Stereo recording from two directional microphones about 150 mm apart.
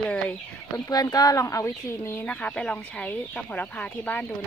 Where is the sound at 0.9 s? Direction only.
25° left (ahead or behind); by 4.2 s 10° left (ahead or behind).